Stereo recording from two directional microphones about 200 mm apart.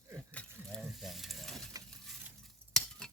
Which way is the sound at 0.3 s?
5° left (ahead or behind).